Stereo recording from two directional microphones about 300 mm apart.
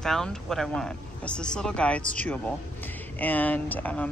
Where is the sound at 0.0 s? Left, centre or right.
Centre.